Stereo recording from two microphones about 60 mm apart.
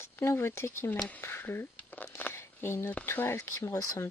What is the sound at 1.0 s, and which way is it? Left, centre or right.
Speech, left.